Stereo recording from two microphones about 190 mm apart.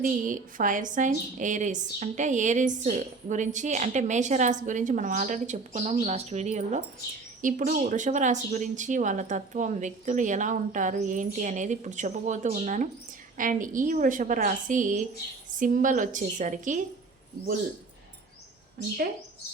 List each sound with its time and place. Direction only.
0.0 s a woman's voice: 45° right (ahead or behind)